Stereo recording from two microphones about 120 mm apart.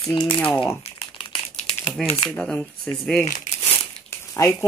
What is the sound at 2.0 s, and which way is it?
Speech, centre (ahead or behind).